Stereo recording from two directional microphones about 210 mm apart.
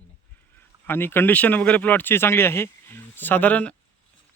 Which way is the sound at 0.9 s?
10° left (ahead or behind).